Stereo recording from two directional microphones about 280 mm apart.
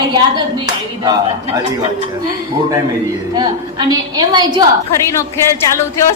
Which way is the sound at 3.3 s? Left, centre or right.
Centre.